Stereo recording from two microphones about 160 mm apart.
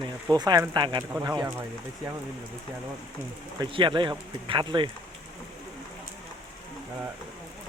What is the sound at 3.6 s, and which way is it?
Speech, 30° right (ahead or behind).